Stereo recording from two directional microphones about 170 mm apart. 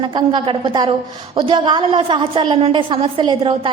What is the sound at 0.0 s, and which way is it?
A woman's voice, 30° right (ahead or behind).